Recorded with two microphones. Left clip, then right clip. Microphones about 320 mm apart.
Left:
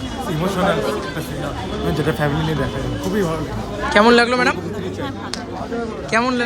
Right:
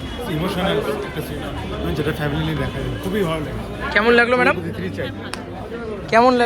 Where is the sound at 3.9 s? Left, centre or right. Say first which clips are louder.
Left 2 dB; centre.